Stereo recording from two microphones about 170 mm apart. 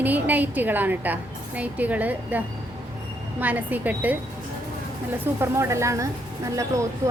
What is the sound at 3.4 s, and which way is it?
Speech, 10° right (ahead or behind).